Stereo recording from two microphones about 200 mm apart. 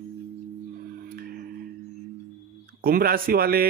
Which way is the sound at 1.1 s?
50° right (ahead or behind).